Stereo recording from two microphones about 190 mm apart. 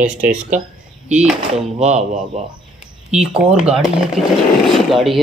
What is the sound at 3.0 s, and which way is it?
Speech, 5° right (ahead or behind).